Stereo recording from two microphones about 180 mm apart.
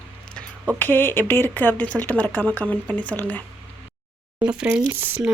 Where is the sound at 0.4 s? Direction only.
5° left (ahead or behind).